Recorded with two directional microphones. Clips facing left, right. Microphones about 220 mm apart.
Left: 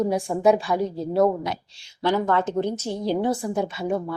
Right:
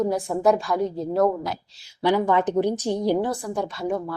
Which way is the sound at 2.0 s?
15° right (ahead or behind).